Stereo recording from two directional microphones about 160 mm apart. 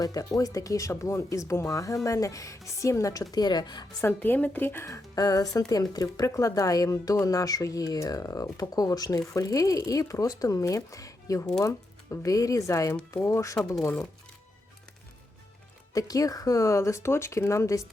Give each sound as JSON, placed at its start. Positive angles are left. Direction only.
{"t": 0.0, "sound": "speech", "side_deg": 20}
{"t": 4.0, "sound": "speech", "side_deg": 10}
{"t": 15.9, "sound": "speech", "side_deg": 20}